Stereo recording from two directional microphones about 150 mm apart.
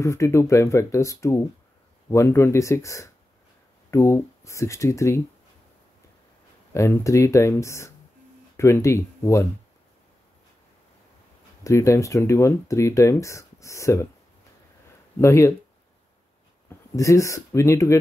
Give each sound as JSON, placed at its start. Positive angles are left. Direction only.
{"t": 0.0, "sound": "speech", "side_deg": 20}
{"t": 6.7, "sound": "speech", "side_deg": 20}
{"t": 11.6, "sound": "speech", "side_deg": 20}
{"t": 15.1, "sound": "speech", "side_deg": 15}
{"t": 16.6, "sound": "speech", "side_deg": 20}